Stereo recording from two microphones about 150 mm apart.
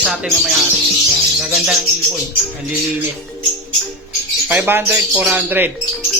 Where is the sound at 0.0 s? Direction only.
5° right (ahead or behind).